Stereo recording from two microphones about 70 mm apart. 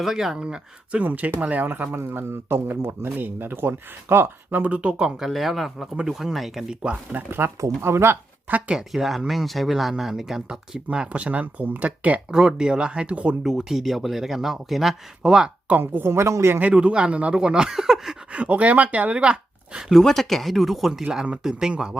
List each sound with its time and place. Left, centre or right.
0.0 s speech: centre; by 4.7 s right
4.7 s speech: centre
5.2 s speech: centre
6.8 s speech: right
8.5 s speech: centre
8.9 s speech: centre; by 12.2 s right
12.3 s speech: centre
13.4 s speech: centre
15.8 s speech: right
16.6 s speech: centre
18.3 s speech: centre
19.9 s speech: centre
21.0 s speech: centre